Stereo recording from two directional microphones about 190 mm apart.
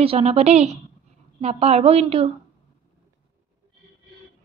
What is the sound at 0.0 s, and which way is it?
A woman's voice, 30° right (ahead or behind).